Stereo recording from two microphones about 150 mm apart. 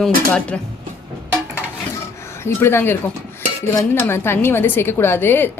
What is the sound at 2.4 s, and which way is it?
Speech, 15° left (ahead or behind).